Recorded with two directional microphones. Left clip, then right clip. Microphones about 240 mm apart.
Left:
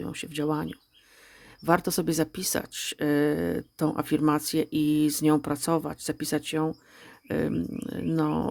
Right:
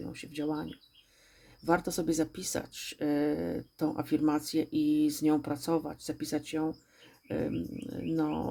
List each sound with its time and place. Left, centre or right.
0.0 s speech: left